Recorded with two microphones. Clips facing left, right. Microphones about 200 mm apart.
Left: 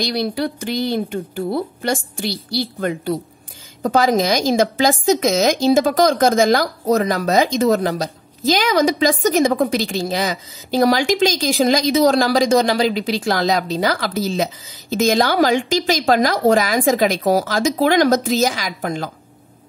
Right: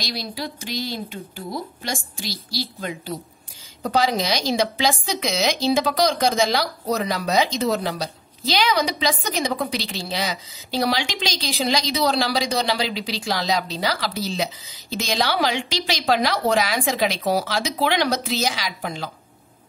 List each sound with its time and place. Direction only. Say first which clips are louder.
0.0 s speech: left 9 dB; 55° left (ahead or behind)